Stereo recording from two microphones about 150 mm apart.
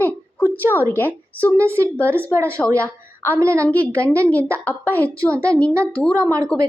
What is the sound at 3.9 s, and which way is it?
A woman's voice, 10° left (ahead or behind).